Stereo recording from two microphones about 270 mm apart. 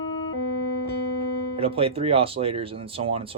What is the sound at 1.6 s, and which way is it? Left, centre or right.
Speech, right.